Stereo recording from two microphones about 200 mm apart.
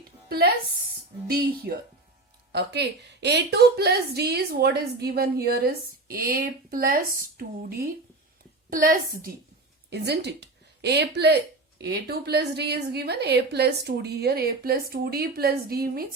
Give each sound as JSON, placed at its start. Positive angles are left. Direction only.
{"t": 0.3, "sound": "a woman's voice", "side_deg": -50}
{"t": 9.9, "sound": "a woman's voice", "side_deg": -55}